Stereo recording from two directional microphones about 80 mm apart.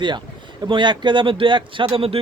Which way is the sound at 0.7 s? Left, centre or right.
Right.